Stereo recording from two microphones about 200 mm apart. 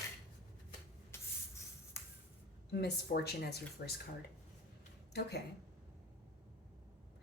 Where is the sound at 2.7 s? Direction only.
55° left (ahead or behind).